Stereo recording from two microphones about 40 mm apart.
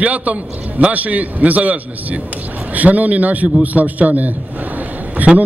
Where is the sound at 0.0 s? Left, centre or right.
Right.